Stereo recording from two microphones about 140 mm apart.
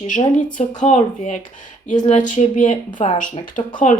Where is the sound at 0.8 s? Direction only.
60° left (ahead or behind).